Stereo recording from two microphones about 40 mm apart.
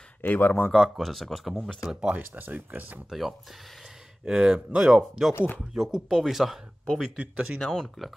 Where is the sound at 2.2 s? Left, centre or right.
Right.